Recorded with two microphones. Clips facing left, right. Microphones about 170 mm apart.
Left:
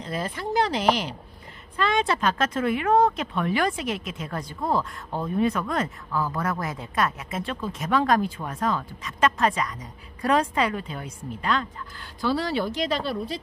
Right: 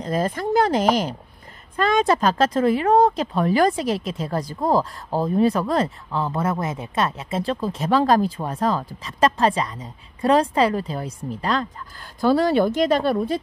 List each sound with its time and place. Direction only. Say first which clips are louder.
0.0 s speech: right 7 dB; 45° right (ahead or behind)
12.2 s speech: right 8 dB; 45° right (ahead or behind)